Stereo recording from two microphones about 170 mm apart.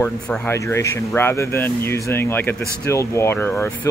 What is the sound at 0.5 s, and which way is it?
Speech, 15° left (ahead or behind).